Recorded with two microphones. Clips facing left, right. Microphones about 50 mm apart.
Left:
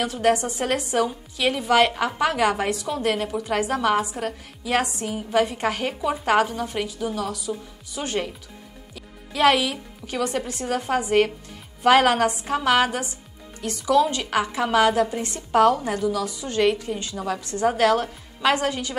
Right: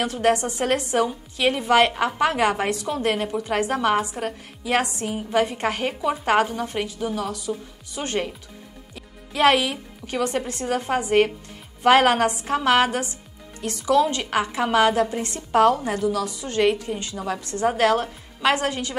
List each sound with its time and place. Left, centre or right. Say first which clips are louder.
0.0 s a woman's voice: even; right
7.3 s a woman's voice: right 1 dB; right
8.9 s a woman's voice: right 1 dB; right
14.2 s a woman's voice: even; centre
15.2 s a woman's voice: even; right
16.9 s a woman's voice: even; centre
17.3 s a woman's voice: even; right